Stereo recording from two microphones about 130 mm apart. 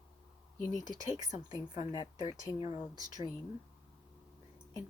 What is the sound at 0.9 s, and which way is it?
Speech, 25° right (ahead or behind).